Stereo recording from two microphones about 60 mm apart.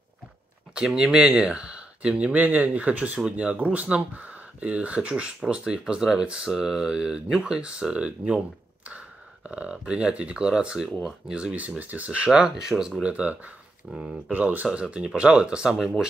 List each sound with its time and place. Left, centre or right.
0.7 s speech: centre
11.8 s speech: right; by 13.0 s centre
13.0 s speech: right
13.9 s speech: centre
14.3 s speech: right; by 15.9 s centre